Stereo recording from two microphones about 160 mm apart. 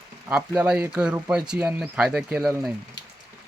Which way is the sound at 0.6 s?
5° right (ahead or behind).